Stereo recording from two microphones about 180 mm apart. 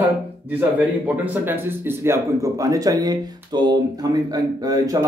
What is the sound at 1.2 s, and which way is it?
Speech, 10° right (ahead or behind).